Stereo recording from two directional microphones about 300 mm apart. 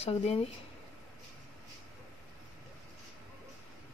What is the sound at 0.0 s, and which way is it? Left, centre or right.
Speech, centre.